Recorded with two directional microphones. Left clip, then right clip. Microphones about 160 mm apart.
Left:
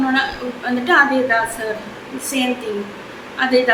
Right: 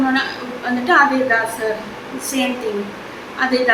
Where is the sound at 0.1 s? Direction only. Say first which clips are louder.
Left 1 dB; 10° left (ahead or behind).